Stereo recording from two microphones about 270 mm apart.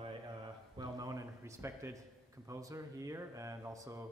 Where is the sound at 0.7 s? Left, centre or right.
Centre.